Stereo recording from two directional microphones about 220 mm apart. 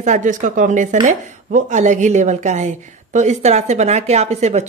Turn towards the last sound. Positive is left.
turn(degrees=-30)  # may be behind; listen again after turning